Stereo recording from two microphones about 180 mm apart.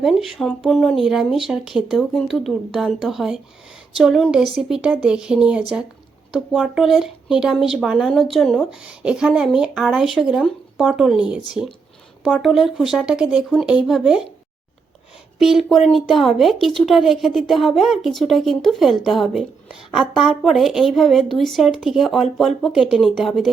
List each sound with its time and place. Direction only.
0.0 s a woman's voice: centre (ahead or behind)
15.4 s a woman's voice: centre (ahead or behind)